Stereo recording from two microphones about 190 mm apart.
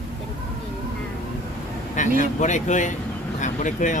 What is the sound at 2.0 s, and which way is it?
Speech, 40° left (ahead or behind).